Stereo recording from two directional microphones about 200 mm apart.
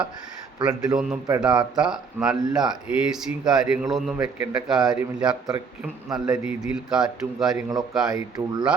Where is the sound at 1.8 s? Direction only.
5° right (ahead or behind).